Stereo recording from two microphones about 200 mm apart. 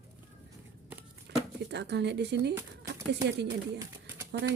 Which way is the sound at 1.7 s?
60° right (ahead or behind).